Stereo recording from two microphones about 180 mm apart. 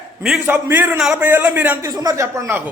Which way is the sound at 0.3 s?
10° right (ahead or behind).